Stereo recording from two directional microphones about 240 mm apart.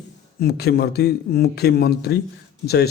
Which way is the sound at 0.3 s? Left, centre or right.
Left.